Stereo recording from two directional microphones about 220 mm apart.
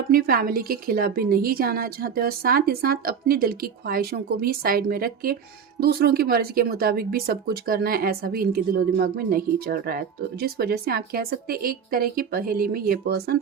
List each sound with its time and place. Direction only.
0.1 s a woman's voice: 45° right (ahead or behind)